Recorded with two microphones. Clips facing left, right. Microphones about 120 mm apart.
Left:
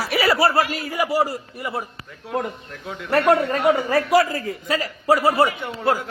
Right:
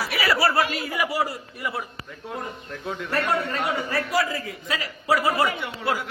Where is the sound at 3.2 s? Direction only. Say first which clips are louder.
Left 10 dB; 55° left (ahead or behind).